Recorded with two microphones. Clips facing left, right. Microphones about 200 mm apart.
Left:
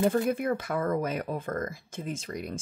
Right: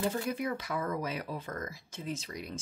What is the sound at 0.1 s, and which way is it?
Speech, 50° left (ahead or behind).